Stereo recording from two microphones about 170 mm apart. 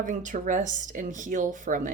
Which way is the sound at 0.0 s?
50° right (ahead or behind).